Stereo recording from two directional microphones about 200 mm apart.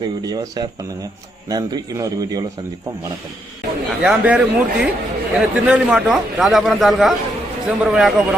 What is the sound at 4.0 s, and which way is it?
A man's voice, 5° right (ahead or behind).